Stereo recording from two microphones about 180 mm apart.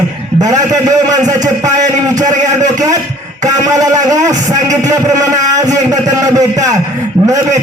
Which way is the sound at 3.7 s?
20° right (ahead or behind).